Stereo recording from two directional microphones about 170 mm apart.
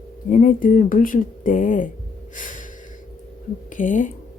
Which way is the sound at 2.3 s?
50° left (ahead or behind).